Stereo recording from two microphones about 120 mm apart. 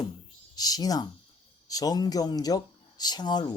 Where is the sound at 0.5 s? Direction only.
35° left (ahead or behind).